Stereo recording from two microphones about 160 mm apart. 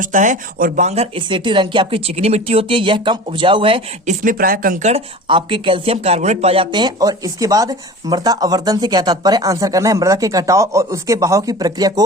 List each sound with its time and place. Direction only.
0.0 s speech: 50° right (ahead or behind); by 3.8 s 35° right (ahead or behind)
4.0 s speech: 55° right (ahead or behind)
4.9 s speech: 35° right (ahead or behind)